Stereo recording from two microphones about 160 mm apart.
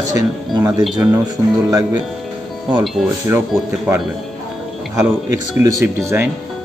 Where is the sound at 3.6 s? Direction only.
15° right (ahead or behind).